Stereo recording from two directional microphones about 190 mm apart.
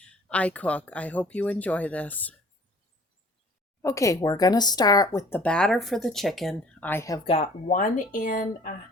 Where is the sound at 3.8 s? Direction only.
15° left (ahead or behind).